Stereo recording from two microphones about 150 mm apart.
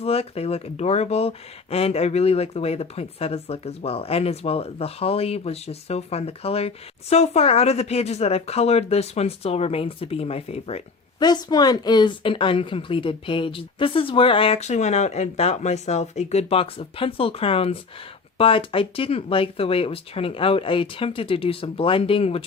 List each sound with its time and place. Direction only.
0.0 s speech: 40° left (ahead or behind)
11.2 s a woman's voice: 25° left (ahead or behind)